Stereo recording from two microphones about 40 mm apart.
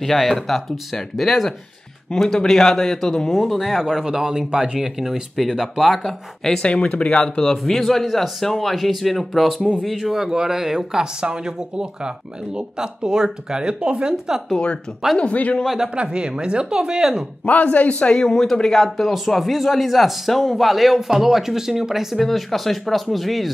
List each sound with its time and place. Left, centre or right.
0.0 s a man's voice: centre
4.0 s a man's voice: centre
6.6 s speech: left
7.6 s a man's voice: centre
15.1 s a man's voice: left
16.0 s speech: right
17.5 s a man's voice: left
18.3 s a man's voice: centre
22.2 s a man's voice: centre